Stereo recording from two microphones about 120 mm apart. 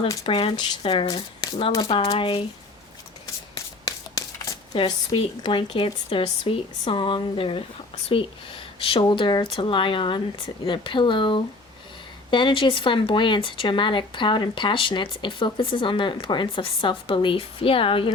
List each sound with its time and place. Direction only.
0.3 s speech: 50° left (ahead or behind)
4.7 s speech: 45° left (ahead or behind)